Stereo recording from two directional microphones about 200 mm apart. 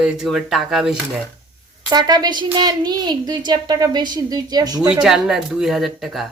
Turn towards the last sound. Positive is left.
turn(degrees=0)  # may be behind; listen again after turning